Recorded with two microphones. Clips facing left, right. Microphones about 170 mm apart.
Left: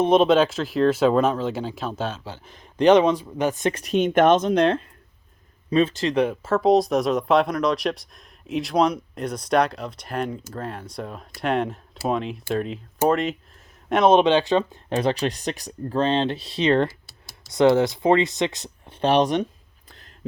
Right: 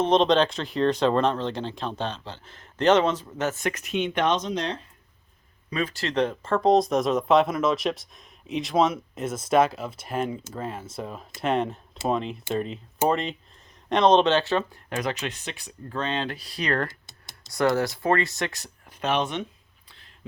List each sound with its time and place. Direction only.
0.0 s speech: 10° left (ahead or behind)
3.7 s speech: 35° left (ahead or behind); by 4.8 s 55° left (ahead or behind)
5.7 s speech: 25° left (ahead or behind)
14.9 s speech: 35° left (ahead or behind)
17.1 s computer keyboard: 20° right (ahead or behind)
17.5 s speech: 20° left (ahead or behind); by 19.5 s 35° left (ahead or behind)